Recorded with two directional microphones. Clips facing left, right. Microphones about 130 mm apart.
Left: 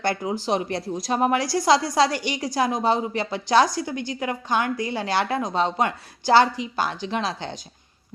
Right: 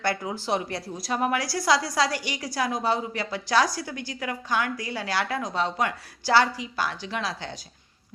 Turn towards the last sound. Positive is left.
turn(degrees=25)  # may be behind; listen again after turning